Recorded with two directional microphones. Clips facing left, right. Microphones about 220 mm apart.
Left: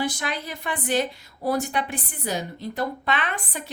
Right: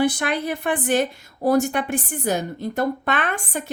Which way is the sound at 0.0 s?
55° right (ahead or behind).